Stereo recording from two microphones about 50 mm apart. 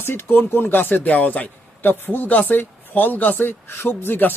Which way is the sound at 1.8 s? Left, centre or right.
Left.